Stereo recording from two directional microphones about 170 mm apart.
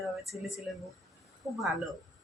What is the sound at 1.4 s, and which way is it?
Speech, 15° right (ahead or behind).